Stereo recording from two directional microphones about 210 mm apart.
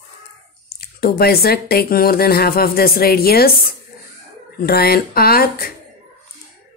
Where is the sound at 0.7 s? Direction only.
45° left (ahead or behind).